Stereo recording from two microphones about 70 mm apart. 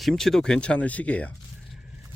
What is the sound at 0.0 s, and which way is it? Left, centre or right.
Speech, centre.